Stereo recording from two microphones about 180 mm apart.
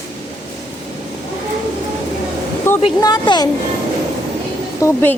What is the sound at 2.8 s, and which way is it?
Speech, 25° left (ahead or behind).